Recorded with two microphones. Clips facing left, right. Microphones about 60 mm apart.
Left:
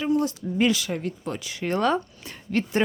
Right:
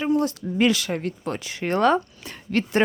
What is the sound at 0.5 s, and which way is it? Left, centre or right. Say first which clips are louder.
Speech: right 2 dB; right.